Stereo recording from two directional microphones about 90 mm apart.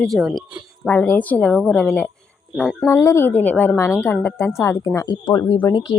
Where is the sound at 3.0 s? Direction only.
30° left (ahead or behind).